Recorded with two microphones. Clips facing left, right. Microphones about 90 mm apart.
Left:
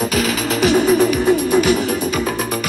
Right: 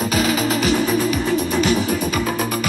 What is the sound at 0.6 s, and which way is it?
Music, 15° left (ahead or behind).